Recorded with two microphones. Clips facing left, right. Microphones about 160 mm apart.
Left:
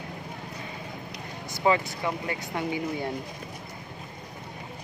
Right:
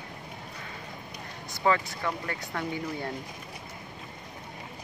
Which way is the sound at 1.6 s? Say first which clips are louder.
Left 2 dB; 15° left (ahead or behind).